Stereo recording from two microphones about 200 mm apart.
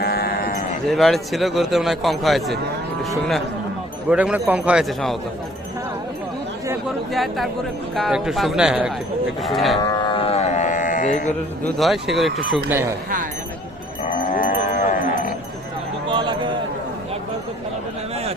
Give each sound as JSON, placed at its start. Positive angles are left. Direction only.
{"t": 0.0, "sound": "livestock", "side_deg": 50}
{"t": 0.9, "sound": "a man's voice", "side_deg": 0}
{"t": 4.1, "sound": "a man's voice", "side_deg": -5}
{"t": 7.1, "sound": "a man's voice", "side_deg": 0}
{"t": 9.9, "sound": "a sound", "side_deg": 25}
{"t": 11.6, "sound": "a man's voice", "side_deg": 0}
{"t": 14.8, "sound": "sheep", "side_deg": 40}
{"t": 16.0, "sound": "a sound", "side_deg": -25}